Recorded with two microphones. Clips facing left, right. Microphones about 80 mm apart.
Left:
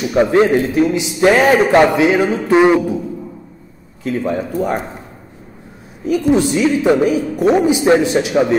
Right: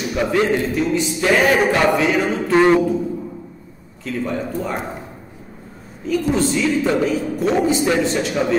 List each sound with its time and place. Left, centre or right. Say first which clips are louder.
0.1 s a man's voice: left 6 dB; left; by 3.0 s centre
4.0 s a man's voice: left 4 dB; left
6.0 s a woman's voice: left 5 dB; centre